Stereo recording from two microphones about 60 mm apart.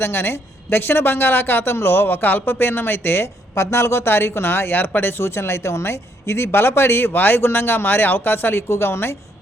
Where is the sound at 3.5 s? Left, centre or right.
Left.